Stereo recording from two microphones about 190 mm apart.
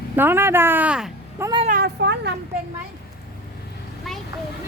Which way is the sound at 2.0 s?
65° right (ahead or behind).